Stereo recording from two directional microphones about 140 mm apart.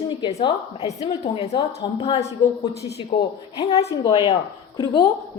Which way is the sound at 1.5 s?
35° left (ahead or behind).